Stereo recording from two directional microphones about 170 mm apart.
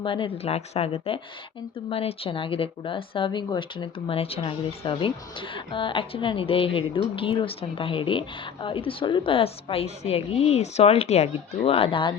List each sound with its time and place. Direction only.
0.0 s a woman's voice: 30° left (ahead or behind)